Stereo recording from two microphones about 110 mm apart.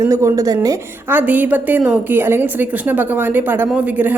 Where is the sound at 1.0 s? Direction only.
15° right (ahead or behind).